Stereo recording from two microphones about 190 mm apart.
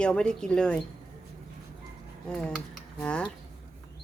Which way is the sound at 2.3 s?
5° left (ahead or behind).